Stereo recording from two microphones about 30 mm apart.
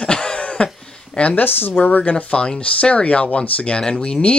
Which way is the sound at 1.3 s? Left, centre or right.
Left.